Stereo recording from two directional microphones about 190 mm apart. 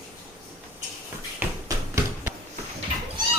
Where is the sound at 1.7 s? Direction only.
20° right (ahead or behind).